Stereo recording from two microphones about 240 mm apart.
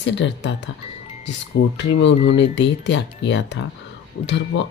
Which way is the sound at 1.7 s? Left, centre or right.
Left.